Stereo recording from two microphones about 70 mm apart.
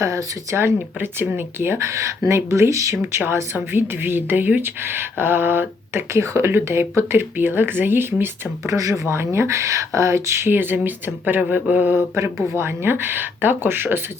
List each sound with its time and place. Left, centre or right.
0.0 s speech: right
0.5 s speech: right
2.9 s speech: right
8.6 s speech: right
12.5 s speech: right